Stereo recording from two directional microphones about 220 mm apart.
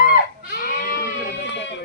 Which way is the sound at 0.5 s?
40° left (ahead or behind).